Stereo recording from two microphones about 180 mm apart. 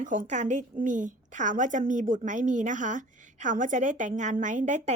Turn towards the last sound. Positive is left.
turn(degrees=-40)  # may be behind; listen again after turning